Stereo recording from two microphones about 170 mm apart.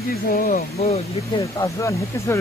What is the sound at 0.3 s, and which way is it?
Speech, 55° left (ahead or behind).